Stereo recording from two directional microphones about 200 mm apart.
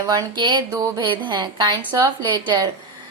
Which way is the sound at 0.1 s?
20° right (ahead or behind).